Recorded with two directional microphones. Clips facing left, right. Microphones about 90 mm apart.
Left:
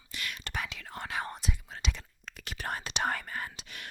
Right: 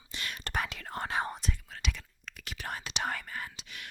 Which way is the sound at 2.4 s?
40° left (ahead or behind).